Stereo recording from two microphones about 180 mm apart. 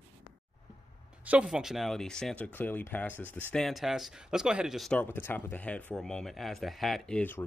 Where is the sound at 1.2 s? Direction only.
5° right (ahead or behind).